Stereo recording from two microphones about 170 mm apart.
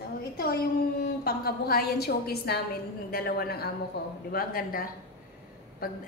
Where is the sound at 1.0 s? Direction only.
60° left (ahead or behind).